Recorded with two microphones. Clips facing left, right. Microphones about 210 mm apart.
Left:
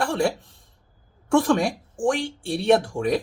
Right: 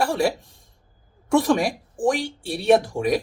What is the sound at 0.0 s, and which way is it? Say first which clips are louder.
Speech: right 1 dB; 10° right (ahead or behind).